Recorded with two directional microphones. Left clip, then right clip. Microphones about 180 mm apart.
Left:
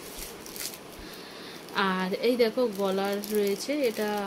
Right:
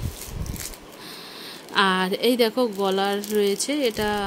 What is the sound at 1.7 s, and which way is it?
Speech, 50° right (ahead or behind).